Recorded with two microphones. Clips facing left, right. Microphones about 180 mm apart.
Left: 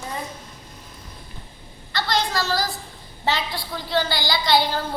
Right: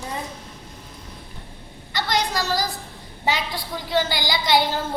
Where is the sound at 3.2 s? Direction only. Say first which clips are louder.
Even; 15° right (ahead or behind).